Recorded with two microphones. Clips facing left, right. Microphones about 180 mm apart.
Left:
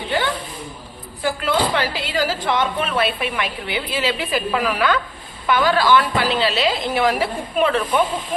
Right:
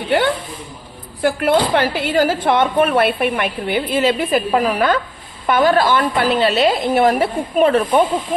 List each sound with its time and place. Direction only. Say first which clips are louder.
1.2 s speech: right 5 dB; 55° right (ahead or behind)